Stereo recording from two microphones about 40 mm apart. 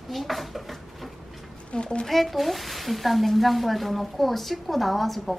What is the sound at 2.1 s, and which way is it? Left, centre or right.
A woman's voice, centre.